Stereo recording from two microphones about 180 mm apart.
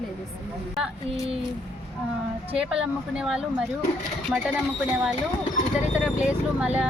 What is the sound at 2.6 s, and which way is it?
Speech, 5° right (ahead or behind).